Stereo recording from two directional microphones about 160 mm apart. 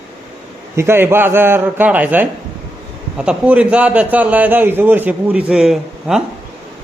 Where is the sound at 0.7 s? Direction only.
15° right (ahead or behind).